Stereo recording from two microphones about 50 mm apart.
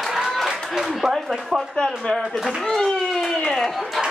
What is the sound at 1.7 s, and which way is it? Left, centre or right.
A child's voice, centre.